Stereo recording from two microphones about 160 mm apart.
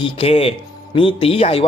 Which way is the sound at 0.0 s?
35° left (ahead or behind).